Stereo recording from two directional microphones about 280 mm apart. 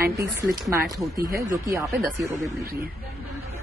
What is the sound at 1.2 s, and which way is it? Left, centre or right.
Speech, centre.